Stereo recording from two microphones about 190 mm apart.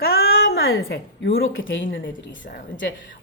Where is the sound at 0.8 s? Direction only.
70° left (ahead or behind).